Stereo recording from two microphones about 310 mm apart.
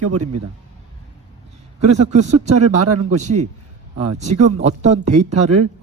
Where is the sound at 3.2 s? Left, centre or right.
Right.